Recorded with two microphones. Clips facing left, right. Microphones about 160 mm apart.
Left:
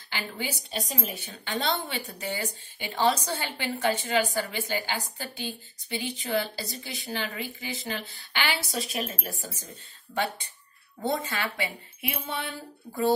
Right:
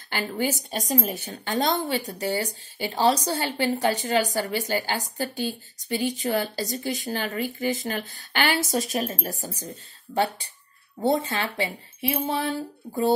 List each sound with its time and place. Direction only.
0.1 s a woman's voice: 45° right (ahead or behind); by 13.1 s 30° right (ahead or behind)